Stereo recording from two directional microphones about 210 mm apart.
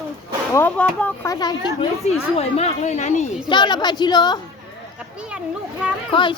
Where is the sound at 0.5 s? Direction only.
10° left (ahead or behind).